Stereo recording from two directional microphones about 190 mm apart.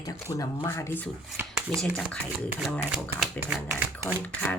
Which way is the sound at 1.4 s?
10° right (ahead or behind).